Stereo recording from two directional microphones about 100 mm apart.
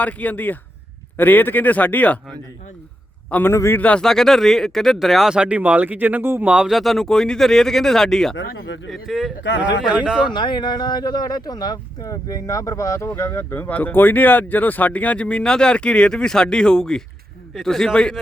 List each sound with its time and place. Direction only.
0.0 s speech: 15° left (ahead or behind)
3.2 s a man's voice: 15° left (ahead or behind)
3.5 s speech: 30° left (ahead or behind)
3.8 s speech: 10° left (ahead or behind); by 6.5 s 20° right (ahead or behind)
6.5 s speech: 5° right (ahead or behind)
10.2 s speech: 50° left (ahead or behind); by 18.2 s 5° left (ahead or behind)